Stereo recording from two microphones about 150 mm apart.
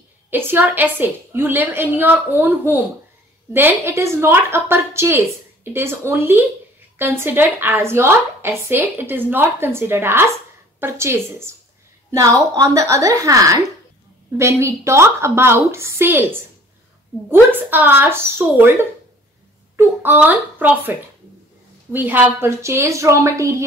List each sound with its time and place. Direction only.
0.3 s a woman's voice: 15° right (ahead or behind)
19.8 s a woman's voice: 15° right (ahead or behind)
21.9 s a woman's voice: 10° right (ahead or behind)